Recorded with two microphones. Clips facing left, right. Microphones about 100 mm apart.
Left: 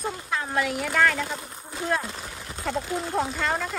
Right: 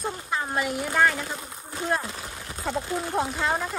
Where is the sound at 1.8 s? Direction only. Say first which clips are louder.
Even; 5° right (ahead or behind).